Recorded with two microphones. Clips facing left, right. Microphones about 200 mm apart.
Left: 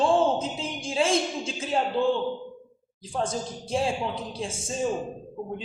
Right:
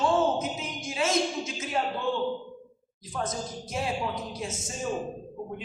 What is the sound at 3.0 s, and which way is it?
A woman's voice, 30° left (ahead or behind).